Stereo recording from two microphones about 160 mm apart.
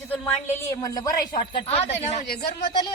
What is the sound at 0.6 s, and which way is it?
Speech, 20° left (ahead or behind).